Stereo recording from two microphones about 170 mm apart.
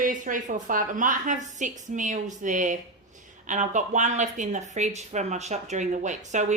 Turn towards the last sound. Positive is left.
turn(degrees=-45)  # may be behind; listen again after turning